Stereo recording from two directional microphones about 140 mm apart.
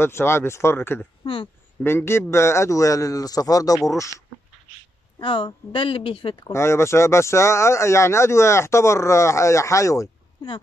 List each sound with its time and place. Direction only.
0.0 s speech: 15° left (ahead or behind)
1.2 s speech: 40° left (ahead or behind)
1.8 s speech: 15° left (ahead or behind)
5.2 s speech: 40° left (ahead or behind)
6.5 s speech: 20° left (ahead or behind)